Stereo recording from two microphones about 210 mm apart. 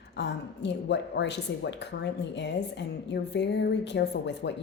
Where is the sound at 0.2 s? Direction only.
55° left (ahead or behind).